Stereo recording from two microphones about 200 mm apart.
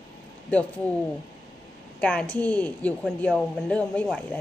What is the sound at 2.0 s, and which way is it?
A woman's voice, 5° left (ahead or behind).